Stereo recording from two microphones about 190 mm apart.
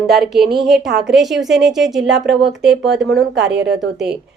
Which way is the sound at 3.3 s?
65° right (ahead or behind).